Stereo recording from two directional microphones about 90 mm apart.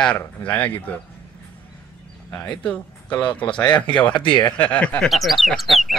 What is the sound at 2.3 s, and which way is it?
Speech, 15° left (ahead or behind).